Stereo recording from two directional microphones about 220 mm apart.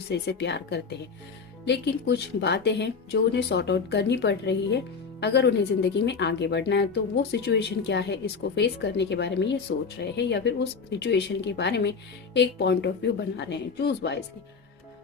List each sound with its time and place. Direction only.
0.1 s a woman's voice: 50° left (ahead or behind)